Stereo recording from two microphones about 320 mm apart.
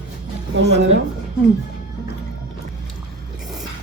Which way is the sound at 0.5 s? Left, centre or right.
Right.